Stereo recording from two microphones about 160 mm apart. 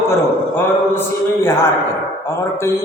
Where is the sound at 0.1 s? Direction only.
15° left (ahead or behind).